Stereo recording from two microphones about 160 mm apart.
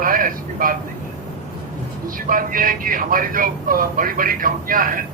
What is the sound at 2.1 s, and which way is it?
Speech, 60° right (ahead or behind).